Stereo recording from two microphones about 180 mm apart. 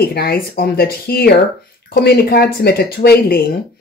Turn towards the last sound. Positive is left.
turn(degrees=60)  # may be behind; listen again after turning